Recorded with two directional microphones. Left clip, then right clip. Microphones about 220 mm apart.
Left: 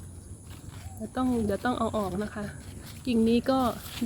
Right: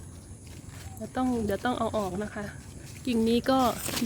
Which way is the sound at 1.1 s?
Centre (ahead or behind).